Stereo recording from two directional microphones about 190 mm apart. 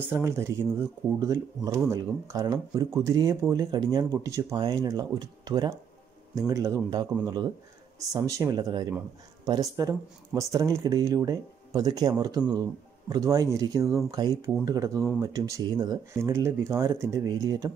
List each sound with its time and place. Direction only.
0.1 s speech: 15° right (ahead or behind)
8.1 s speech: 15° right (ahead or behind)